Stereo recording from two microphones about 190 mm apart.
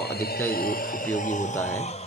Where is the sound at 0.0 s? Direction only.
55° left (ahead or behind); by 2.0 s 35° left (ahead or behind).